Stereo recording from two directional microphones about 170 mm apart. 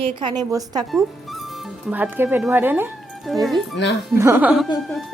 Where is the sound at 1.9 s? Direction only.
10° right (ahead or behind).